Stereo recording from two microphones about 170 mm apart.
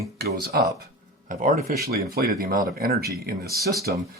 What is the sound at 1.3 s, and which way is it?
Speech, 50° right (ahead or behind).